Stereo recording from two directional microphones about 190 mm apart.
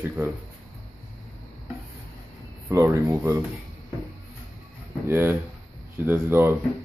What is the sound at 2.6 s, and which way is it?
Speech, 15° right (ahead or behind).